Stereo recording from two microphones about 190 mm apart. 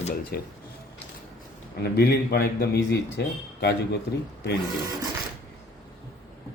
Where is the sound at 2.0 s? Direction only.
55° left (ahead or behind).